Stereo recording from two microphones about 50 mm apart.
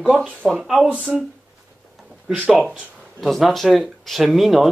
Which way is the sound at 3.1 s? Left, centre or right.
Centre.